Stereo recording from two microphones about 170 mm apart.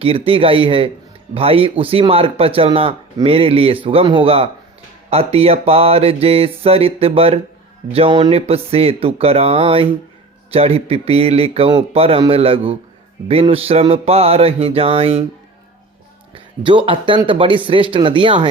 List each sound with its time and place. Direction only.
0.0 s mantra: 35° right (ahead or behind)
16.3 s speech: 30° right (ahead or behind)